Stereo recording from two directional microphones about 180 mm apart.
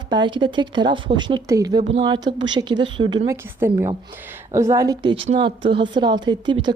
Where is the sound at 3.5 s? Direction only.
15° right (ahead or behind).